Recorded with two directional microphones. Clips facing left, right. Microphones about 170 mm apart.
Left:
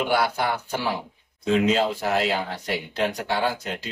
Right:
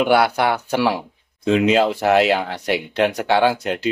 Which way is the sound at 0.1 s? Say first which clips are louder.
Right 7 dB; 75° right (ahead or behind).